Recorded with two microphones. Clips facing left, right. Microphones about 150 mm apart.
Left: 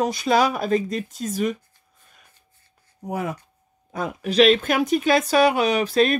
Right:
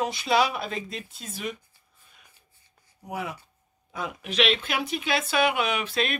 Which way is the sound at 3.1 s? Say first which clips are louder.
Left 6 dB; 45° left (ahead or behind).